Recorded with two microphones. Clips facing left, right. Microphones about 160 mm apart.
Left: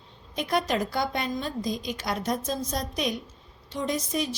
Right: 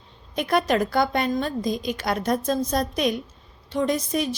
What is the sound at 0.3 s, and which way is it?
A woman's voice, 60° right (ahead or behind).